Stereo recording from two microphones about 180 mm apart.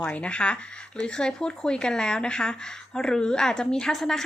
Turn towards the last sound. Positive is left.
turn(degrees=0)  # may be behind; listen again after turning